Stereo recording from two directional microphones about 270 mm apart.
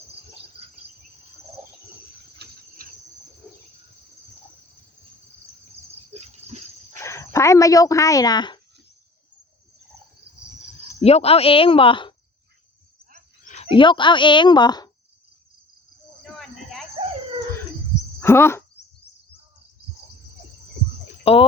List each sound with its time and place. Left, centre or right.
2.4 s cricket: right
6.1 s dog: right
7.0 s speech: centre
11.0 s speech: left
13.4 s speech: left
18.2 s speech: centre
19.1 s bird: left
21.2 s speech: left